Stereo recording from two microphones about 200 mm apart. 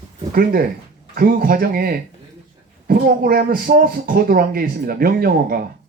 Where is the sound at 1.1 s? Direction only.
45° right (ahead or behind).